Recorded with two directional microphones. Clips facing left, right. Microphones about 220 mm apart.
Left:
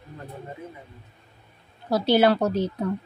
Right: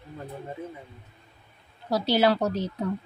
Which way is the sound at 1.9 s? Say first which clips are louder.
Left 3 dB; 55° left (ahead or behind).